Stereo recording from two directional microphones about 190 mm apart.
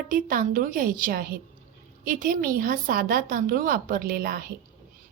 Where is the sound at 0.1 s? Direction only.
45° right (ahead or behind).